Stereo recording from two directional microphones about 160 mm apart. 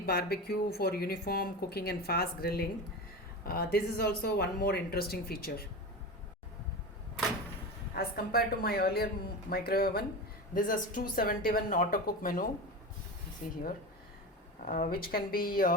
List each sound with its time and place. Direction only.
0.0 s speech: 75° left (ahead or behind)
7.9 s speech: 70° left (ahead or behind)
10.5 s a woman's voice: 60° left (ahead or behind)
14.6 s a woman's voice: 60° left (ahead or behind)